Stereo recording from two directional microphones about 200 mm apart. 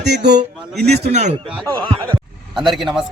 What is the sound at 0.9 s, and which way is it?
Speech, 35° right (ahead or behind).